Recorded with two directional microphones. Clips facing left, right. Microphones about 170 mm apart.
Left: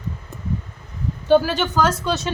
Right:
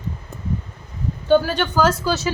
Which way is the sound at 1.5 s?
Centre (ahead or behind).